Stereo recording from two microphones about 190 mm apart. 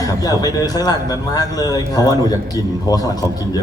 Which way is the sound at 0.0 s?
20° left (ahead or behind).